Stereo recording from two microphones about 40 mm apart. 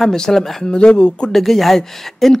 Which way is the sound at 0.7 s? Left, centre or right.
Left.